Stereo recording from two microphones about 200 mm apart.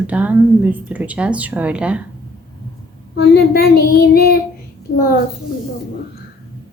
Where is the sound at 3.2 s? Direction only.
50° left (ahead or behind).